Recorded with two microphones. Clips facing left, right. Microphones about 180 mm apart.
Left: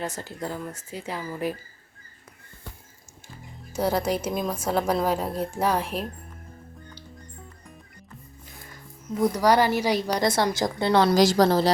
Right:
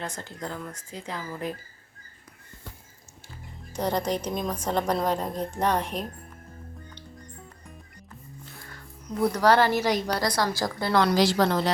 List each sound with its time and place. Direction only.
0.1 s a woman's voice: 5° left (ahead or behind)
3.7 s a woman's voice: 5° left (ahead or behind)
8.4 s music: 15° left (ahead or behind)
9.3 s a woman's voice: 10° left (ahead or behind)
11.1 s a woman's voice: 45° left (ahead or behind)